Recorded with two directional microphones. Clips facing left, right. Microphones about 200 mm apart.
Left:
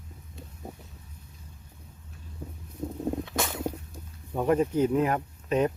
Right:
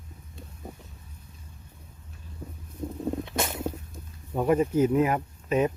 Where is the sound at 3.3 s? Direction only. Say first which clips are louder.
Right 1 dB; 20° right (ahead or behind).